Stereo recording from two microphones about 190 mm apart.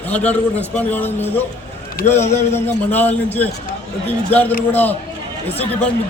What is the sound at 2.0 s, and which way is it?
Speech, 50° left (ahead or behind).